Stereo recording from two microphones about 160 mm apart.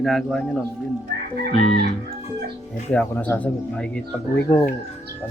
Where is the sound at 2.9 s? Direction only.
10° left (ahead or behind).